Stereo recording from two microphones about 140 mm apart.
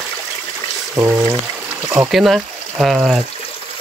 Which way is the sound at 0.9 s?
25° right (ahead or behind).